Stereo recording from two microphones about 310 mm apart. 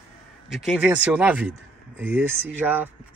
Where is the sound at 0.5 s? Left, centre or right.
Centre.